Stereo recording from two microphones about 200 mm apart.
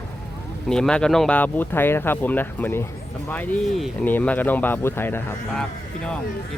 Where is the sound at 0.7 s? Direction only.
5° left (ahead or behind).